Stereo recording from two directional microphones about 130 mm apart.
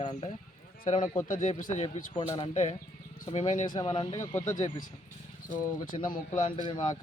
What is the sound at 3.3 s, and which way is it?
Speech, 65° left (ahead or behind).